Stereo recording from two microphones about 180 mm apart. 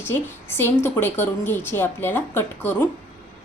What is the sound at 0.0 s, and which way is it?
A woman's voice, 10° left (ahead or behind).